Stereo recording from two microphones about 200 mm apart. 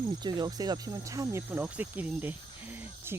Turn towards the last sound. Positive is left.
turn(degrees=-10)  # may be behind; listen again after turning